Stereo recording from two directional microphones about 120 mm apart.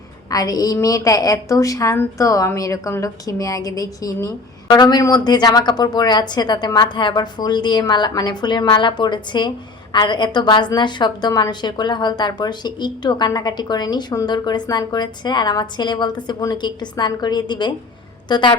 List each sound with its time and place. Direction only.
0.3 s a woman's voice: 30° left (ahead or behind)